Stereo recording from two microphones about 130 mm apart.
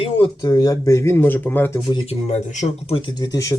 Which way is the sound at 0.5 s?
25° left (ahead or behind).